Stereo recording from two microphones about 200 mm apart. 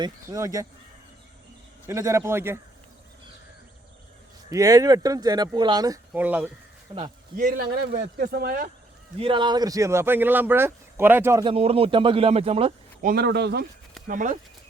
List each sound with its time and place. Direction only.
0.0 s speech: 15° right (ahead or behind)
1.9 s speech: 15° right (ahead or behind)
4.4 s speech: 15° right (ahead or behind)
6.1 s speech: 10° right (ahead or behind)
7.3 s speech: 45° right (ahead or behind)
9.1 s speech: 25° right (ahead or behind)
11.4 s a man's voice: 30° right (ahead or behind)
13.1 s speech: 55° right (ahead or behind)
14.1 s speech: 40° right (ahead or behind)